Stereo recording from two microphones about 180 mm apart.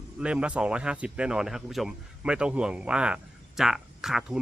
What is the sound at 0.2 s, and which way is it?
Speech, 5° right (ahead or behind).